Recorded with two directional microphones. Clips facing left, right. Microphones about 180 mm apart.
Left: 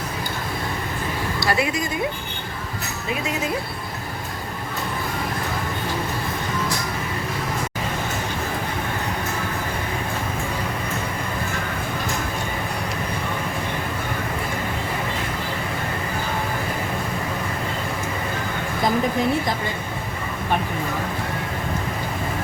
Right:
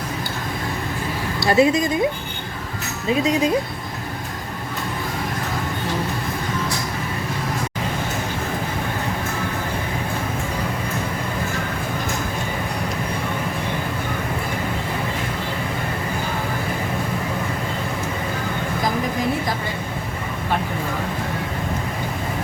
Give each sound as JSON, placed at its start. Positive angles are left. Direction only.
{"t": 1.5, "sound": "a woman's voice", "side_deg": -25}